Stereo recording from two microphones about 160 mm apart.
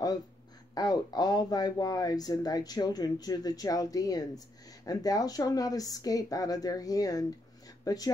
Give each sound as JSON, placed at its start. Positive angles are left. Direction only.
{"t": 0.7, "sound": "speech", "side_deg": 25}